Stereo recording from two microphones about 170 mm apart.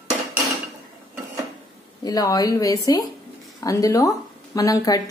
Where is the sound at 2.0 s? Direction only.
20° left (ahead or behind).